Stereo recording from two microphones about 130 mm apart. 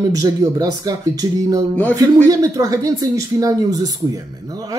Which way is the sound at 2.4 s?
30° right (ahead or behind).